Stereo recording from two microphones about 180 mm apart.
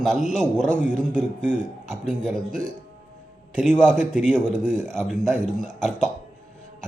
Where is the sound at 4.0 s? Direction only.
40° left (ahead or behind).